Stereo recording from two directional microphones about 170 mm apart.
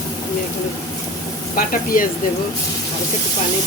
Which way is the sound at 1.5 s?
55° left (ahead or behind).